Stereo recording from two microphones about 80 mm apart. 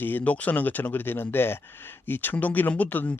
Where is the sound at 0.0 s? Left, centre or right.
Left.